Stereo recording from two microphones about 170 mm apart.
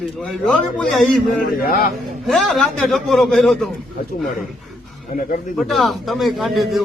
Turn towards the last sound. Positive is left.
turn(degrees=0)  # may be behind; listen again after turning